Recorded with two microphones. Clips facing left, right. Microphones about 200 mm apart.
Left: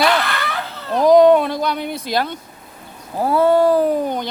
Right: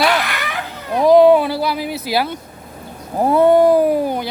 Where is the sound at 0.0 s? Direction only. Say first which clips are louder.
Even; 10° right (ahead or behind).